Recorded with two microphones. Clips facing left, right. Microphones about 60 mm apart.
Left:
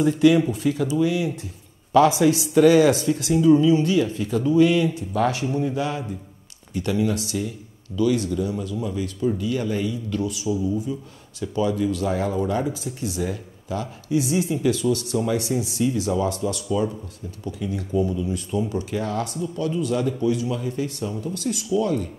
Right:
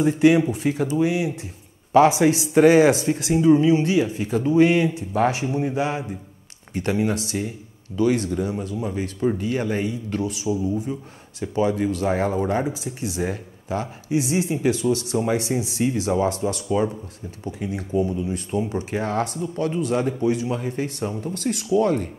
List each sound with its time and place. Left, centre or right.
0.0 s speech: right